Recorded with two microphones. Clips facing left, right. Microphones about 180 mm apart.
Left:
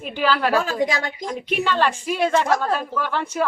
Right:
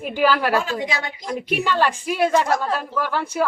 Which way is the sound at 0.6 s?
45° left (ahead or behind).